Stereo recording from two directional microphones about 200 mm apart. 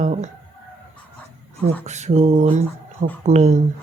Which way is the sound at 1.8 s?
35° right (ahead or behind).